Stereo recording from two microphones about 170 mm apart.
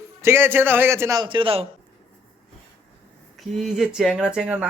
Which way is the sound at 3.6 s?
Centre (ahead or behind).